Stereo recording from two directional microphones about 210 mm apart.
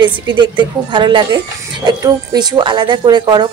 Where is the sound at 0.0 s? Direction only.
20° right (ahead or behind).